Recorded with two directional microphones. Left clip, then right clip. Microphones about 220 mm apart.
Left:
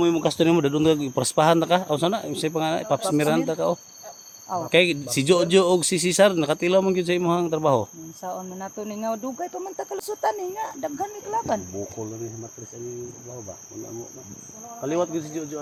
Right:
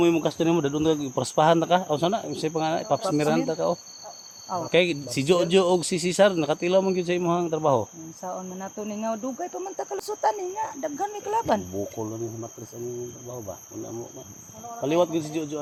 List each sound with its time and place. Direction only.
0.2 s speech: 45° left (ahead or behind)
0.5 s speech: 35° left (ahead or behind)
4.4 s speech: 5° left (ahead or behind)
4.7 s speech: 20° left (ahead or behind)
8.2 s cricket: 5° left (ahead or behind)
11.0 s cricket: 35° right (ahead or behind)
14.8 s cricket: 5° right (ahead or behind)